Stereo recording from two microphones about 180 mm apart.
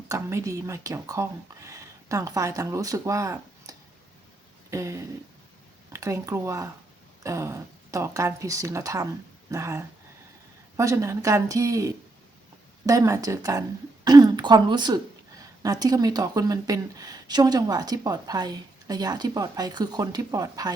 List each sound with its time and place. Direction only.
0.1 s speech: 15° right (ahead or behind)